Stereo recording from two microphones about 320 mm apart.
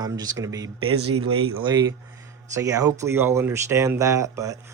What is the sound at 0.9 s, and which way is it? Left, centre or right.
Speech, right.